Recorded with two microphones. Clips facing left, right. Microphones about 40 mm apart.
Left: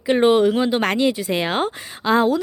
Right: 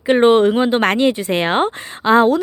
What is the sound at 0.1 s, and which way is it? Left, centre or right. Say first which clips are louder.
Speech: right 4 dB; right.